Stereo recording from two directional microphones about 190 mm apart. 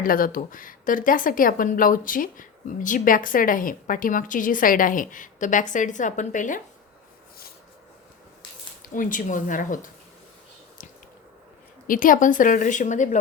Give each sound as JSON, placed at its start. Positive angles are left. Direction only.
{"t": 0.0, "sound": "speech", "side_deg": 50}
{"t": 8.9, "sound": "speech", "side_deg": 45}
{"t": 11.9, "sound": "speech", "side_deg": 45}